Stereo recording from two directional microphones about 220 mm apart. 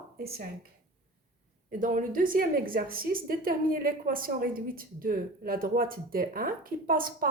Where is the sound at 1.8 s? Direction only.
35° right (ahead or behind).